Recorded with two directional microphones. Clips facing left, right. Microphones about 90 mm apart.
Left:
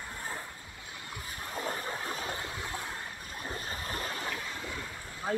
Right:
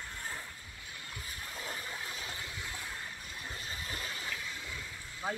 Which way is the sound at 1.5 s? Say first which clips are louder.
Left 8 dB; 45° left (ahead or behind).